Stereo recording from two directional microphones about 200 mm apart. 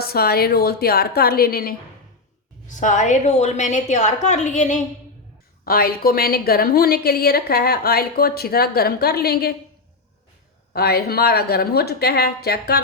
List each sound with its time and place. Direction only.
0.0 s a woman's voice: 50° left (ahead or behind)
2.6 s a woman's voice: 40° left (ahead or behind)
5.6 s a woman's voice: 50° left (ahead or behind)
10.7 s a woman's voice: 50° left (ahead or behind)